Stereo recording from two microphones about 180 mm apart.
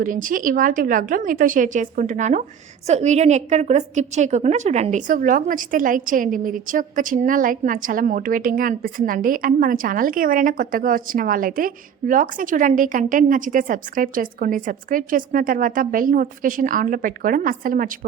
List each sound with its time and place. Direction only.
0.0 s a woman's voice: 50° right (ahead or behind)